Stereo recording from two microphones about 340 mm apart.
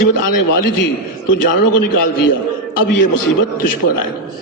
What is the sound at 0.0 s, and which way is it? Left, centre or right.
A man's voice, left.